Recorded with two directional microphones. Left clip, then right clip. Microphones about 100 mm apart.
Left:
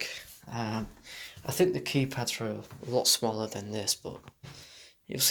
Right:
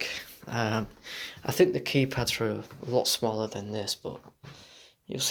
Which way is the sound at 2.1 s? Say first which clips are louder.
Right 5 dB; 65° right (ahead or behind).